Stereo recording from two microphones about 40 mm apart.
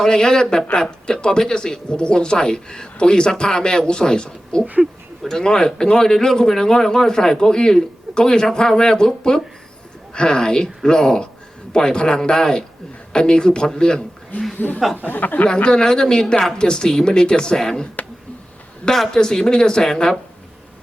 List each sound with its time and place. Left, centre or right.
0.0 s speech: centre
15.0 s speech: left
15.4 s speech: left
18.9 s speech: centre